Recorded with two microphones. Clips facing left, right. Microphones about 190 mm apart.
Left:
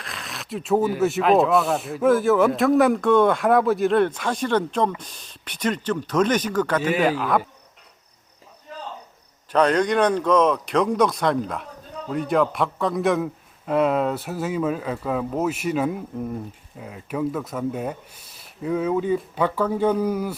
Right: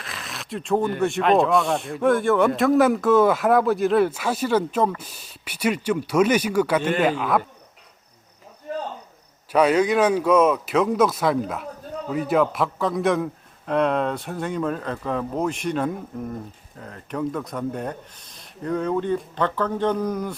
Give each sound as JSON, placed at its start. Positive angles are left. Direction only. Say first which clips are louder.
{"t": 0.0, "sound": "speech", "louder": "even", "side_deg": 0}
{"t": 6.8, "sound": "speech", "louder": "even", "side_deg": 5}
{"t": 8.7, "sound": "cricket", "louder": "right 9 dB", "side_deg": -55}
{"t": 9.5, "sound": "speech", "louder": "right 1 dB", "side_deg": -5}